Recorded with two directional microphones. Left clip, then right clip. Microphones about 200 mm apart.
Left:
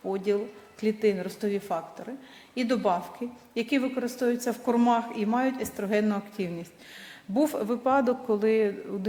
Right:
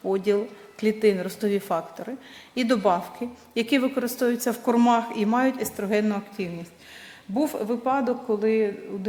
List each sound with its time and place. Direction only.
0.0 s a woman's voice: 15° right (ahead or behind)
5.7 s a woman's voice: 5° left (ahead or behind); by 8.7 s 40° left (ahead or behind)